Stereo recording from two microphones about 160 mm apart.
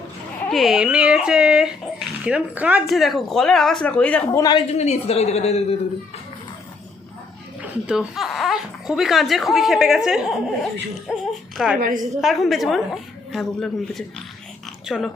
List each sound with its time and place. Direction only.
0.4 s speech: centre (ahead or behind)
4.3 s a man's voice: 25° left (ahead or behind)
4.7 s speech: 40° left (ahead or behind)
7.6 s speech: 5° right (ahead or behind)